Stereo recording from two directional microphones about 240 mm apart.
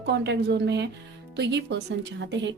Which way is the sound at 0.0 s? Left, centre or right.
Right.